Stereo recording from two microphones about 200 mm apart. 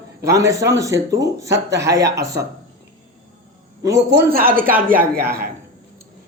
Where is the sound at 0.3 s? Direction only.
15° right (ahead or behind).